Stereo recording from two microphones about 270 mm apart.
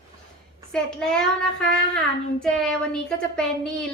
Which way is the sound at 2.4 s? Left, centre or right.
Centre.